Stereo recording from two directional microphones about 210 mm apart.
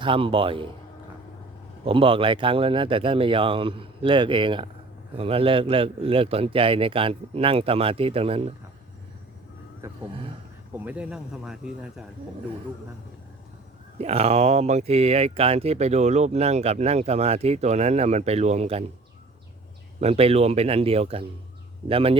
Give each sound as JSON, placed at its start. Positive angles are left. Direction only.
{"t": 0.0, "sound": "a man's voice", "side_deg": -25}
{"t": 1.8, "sound": "a man's voice", "side_deg": -25}
{"t": 9.8, "sound": "vehicle", "side_deg": -10}
{"t": 10.8, "sound": "speech", "side_deg": -5}
{"t": 14.0, "sound": "speech", "side_deg": -30}
{"t": 20.0, "sound": "a man's voice", "side_deg": -30}